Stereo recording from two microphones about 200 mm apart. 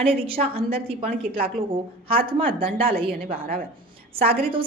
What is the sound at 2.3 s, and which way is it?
Speech, 25° right (ahead or behind).